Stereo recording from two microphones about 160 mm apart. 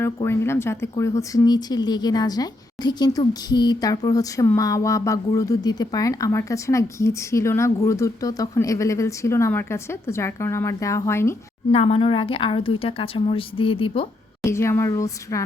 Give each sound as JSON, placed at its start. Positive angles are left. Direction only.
{"t": 0.3, "sound": "a woman's voice", "side_deg": 15}
{"t": 11.7, "sound": "a woman's voice", "side_deg": 40}
{"t": 14.4, "sound": "speech", "side_deg": 15}